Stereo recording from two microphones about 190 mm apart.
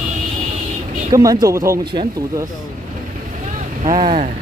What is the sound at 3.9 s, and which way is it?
Speech, 30° right (ahead or behind).